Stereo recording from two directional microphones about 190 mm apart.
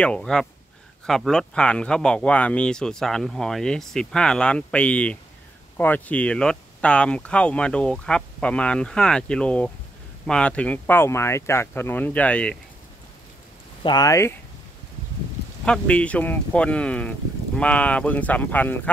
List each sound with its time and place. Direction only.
0.0 s speech: 5° left (ahead or behind)
13.8 s speech: 20° left (ahead or behind)
15.6 s speech: 5° left (ahead or behind)